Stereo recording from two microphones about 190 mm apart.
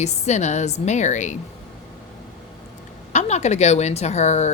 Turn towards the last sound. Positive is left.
turn(degrees=35)  # may be behind; listen again after turning